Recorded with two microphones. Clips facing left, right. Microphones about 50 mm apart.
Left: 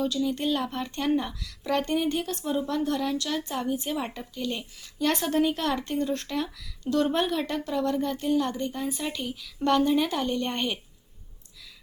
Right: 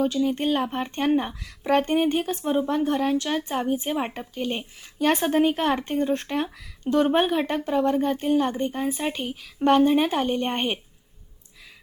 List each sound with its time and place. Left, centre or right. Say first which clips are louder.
0.0 s speech: right 4 dB; right